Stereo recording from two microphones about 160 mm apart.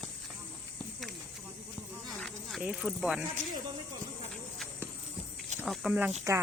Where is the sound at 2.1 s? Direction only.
Centre (ahead or behind).